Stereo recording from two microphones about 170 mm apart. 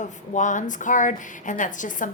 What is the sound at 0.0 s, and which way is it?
A woman's voice, 45° left (ahead or behind).